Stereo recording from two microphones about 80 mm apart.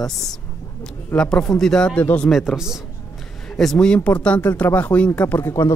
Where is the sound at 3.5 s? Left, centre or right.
Centre.